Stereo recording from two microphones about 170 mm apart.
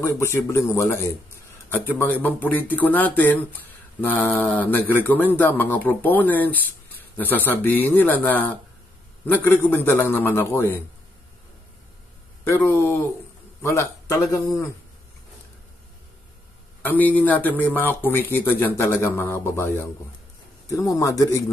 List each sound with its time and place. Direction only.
0.0 s speech: 15° left (ahead or behind)
12.4 s speech: 15° left (ahead or behind)
16.8 s a man's voice: 10° left (ahead or behind)